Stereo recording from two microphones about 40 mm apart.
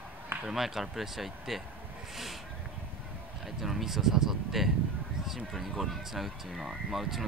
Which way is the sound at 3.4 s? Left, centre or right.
Centre.